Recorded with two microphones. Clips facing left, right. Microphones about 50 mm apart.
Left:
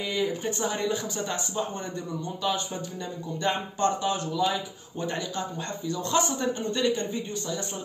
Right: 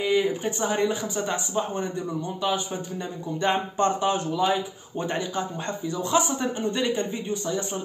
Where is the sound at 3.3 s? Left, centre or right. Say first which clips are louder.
Right 4 dB; right.